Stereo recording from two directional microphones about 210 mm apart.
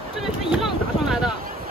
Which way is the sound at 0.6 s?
Centre (ahead or behind).